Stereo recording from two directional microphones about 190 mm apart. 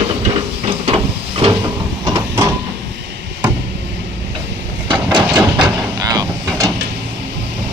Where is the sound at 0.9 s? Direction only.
30° right (ahead or behind).